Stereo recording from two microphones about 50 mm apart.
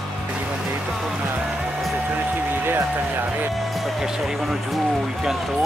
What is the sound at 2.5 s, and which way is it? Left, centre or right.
Music, right.